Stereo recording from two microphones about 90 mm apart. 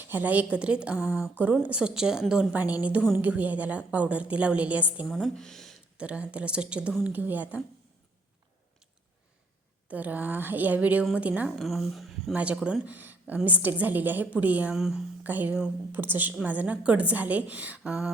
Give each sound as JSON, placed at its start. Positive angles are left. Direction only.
{"t": 0.1, "sound": "a woman's voice", "side_deg": -20}
{"t": 5.0, "sound": "speech", "side_deg": 0}
{"t": 6.0, "sound": "a woman's voice", "side_deg": -15}
{"t": 9.9, "sound": "a woman's voice", "side_deg": -20}
{"t": 11.5, "sound": "speech", "side_deg": 0}
{"t": 12.3, "sound": "a woman's voice", "side_deg": -15}
{"t": 14.8, "sound": "a woman's voice", "side_deg": -5}
{"t": 15.2, "sound": "a woman's voice", "side_deg": -20}